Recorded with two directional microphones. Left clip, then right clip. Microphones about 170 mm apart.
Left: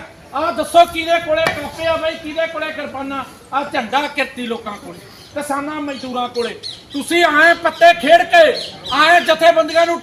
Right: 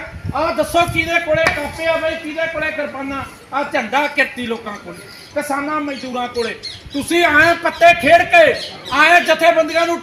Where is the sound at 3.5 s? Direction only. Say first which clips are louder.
Even; 10° right (ahead or behind).